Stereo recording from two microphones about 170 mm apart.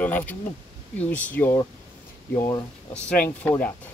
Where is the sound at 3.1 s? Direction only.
10° left (ahead or behind).